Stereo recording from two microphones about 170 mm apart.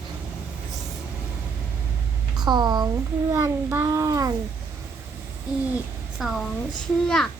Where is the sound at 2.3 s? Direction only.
25° right (ahead or behind).